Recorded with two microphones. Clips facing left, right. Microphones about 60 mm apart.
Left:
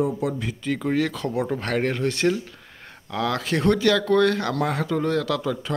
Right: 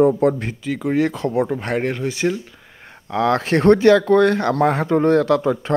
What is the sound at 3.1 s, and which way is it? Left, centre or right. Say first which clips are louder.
Speech: right 7 dB; right.